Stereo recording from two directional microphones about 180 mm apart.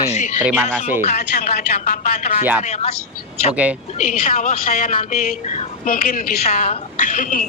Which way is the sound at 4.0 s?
45° left (ahead or behind).